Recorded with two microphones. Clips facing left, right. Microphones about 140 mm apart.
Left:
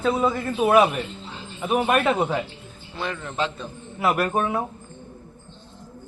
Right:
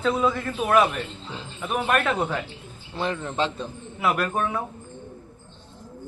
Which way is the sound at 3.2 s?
25° right (ahead or behind).